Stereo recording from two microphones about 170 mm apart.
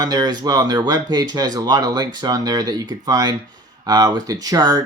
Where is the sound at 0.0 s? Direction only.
25° right (ahead or behind).